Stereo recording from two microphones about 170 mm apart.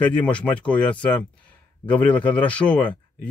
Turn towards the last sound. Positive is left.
turn(degrees=10)  # may be behind; listen again after turning